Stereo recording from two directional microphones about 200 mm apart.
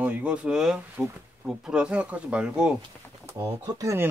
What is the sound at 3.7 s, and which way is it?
Speech, 15° right (ahead or behind).